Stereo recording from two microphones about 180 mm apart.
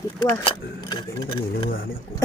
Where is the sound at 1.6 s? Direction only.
55° left (ahead or behind).